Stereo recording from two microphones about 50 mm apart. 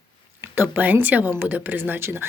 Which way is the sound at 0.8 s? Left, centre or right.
Right.